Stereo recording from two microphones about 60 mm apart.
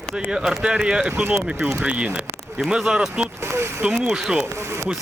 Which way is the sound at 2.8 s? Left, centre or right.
Centre.